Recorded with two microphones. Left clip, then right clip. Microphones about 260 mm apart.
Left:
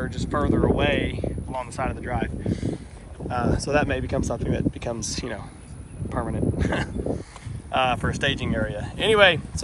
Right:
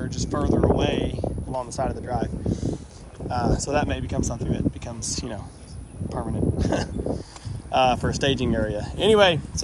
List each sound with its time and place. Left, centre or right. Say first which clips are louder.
0.0 s speech: left 2 dB; centre
3.3 s speech: even; centre